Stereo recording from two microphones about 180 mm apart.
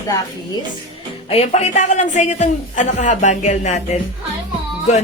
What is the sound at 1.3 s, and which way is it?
A woman's voice, 35° left (ahead or behind).